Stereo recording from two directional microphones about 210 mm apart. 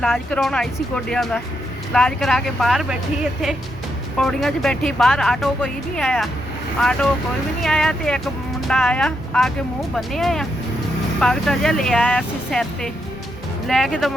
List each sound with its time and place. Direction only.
0.0 s speech: centre (ahead or behind)
4.2 s speech: centre (ahead or behind)